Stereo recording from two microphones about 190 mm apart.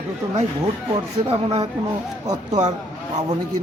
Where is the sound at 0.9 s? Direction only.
25° right (ahead or behind).